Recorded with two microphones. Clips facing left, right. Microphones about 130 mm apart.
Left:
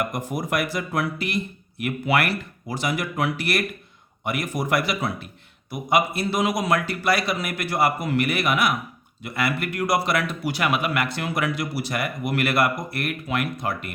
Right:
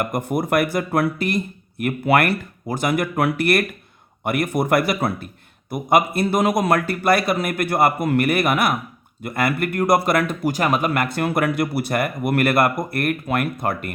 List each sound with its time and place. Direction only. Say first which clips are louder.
0.0 s a man's voice: right 5 dB; 55° right (ahead or behind)